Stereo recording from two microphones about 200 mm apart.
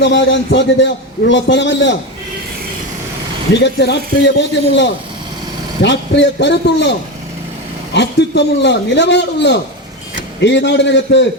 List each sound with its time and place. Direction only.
0.0 s a man's voice: 65° left (ahead or behind)
3.5 s a man's voice: 60° left (ahead or behind)
7.9 s a man's voice: 60° left (ahead or behind)